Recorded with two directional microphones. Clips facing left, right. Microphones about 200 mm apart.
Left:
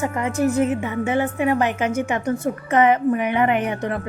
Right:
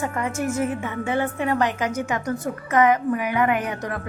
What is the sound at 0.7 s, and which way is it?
A woman's voice, 20° left (ahead or behind).